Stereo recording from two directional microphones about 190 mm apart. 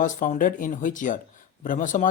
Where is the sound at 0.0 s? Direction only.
45° left (ahead or behind).